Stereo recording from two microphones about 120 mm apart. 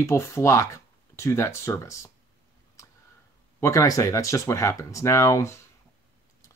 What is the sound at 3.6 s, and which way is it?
Speech, 25° left (ahead or behind).